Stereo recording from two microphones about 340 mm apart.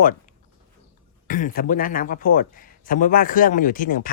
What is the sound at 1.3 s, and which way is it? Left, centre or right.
Speech, left.